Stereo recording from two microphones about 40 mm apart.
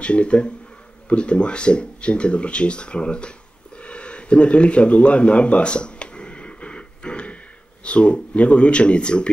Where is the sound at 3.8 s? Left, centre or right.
Left.